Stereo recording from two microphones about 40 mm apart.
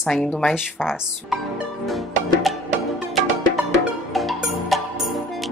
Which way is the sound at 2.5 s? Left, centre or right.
Centre.